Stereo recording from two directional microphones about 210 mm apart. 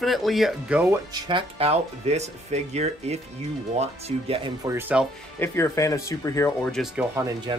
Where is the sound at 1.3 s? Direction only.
25° right (ahead or behind).